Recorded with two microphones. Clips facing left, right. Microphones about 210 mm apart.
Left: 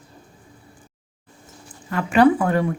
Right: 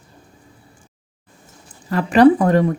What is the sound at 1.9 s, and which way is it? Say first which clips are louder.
Speech: right 4 dB; 35° right (ahead or behind).